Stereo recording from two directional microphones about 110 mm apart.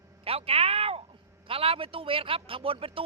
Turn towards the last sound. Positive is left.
turn(degrees=-55)  # may be behind; listen again after turning